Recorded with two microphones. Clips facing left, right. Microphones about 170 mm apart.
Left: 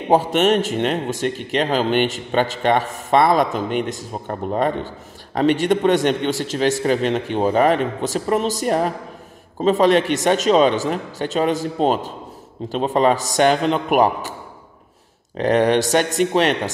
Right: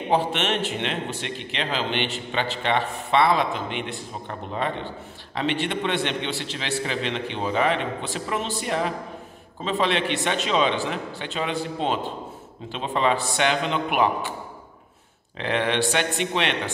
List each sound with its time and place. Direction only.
0.1 s speech: 45° left (ahead or behind)
15.3 s speech: 45° left (ahead or behind)